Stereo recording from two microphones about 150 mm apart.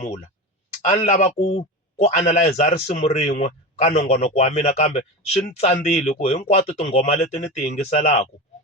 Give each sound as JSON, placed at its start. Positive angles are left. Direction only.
{"t": 0.9, "sound": "a man's voice", "side_deg": 50}